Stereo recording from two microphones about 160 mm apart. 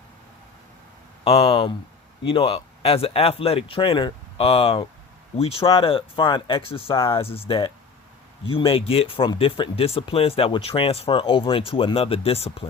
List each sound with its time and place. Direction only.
1.2 s speech: 40° left (ahead or behind)